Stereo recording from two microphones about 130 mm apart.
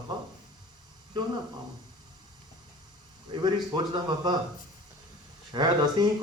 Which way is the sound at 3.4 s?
35° right (ahead or behind).